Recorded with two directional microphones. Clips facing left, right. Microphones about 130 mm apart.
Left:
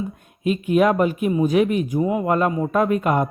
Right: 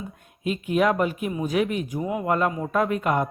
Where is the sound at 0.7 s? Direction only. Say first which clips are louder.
Left 4 dB; 40° left (ahead or behind).